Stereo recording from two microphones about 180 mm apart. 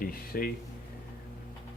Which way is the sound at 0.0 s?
55° left (ahead or behind).